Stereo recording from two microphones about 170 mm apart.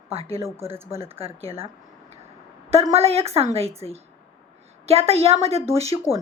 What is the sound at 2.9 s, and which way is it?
Speech, 35° right (ahead or behind).